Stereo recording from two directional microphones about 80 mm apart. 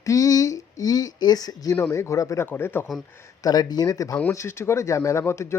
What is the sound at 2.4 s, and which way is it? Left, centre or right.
Speech, left.